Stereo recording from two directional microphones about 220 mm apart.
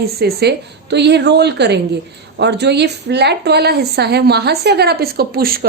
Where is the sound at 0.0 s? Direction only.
45° right (ahead or behind).